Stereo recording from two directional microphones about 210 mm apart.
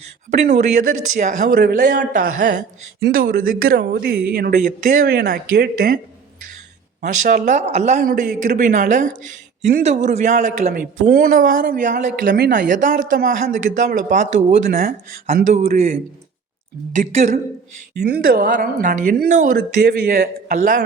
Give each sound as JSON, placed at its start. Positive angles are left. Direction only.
{"t": 0.3, "sound": "speech", "side_deg": -35}
{"t": 7.0, "sound": "speech", "side_deg": -40}
{"t": 15.5, "sound": "speech", "side_deg": -30}